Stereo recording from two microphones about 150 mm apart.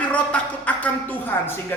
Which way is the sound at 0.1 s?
10° left (ahead or behind).